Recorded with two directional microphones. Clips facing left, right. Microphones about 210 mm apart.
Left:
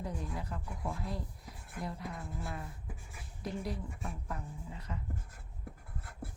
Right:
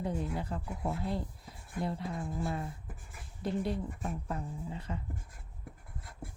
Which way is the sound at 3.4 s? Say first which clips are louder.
Right 5 dB; 30° right (ahead or behind).